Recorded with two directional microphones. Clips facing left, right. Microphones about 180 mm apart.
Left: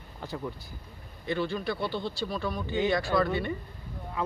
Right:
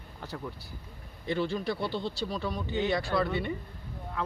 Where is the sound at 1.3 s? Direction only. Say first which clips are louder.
Even; 25° right (ahead or behind).